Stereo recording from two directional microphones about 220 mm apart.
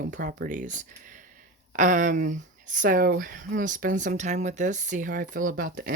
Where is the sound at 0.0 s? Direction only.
40° right (ahead or behind).